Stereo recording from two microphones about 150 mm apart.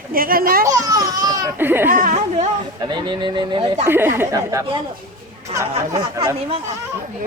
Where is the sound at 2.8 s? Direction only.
30° right (ahead or behind).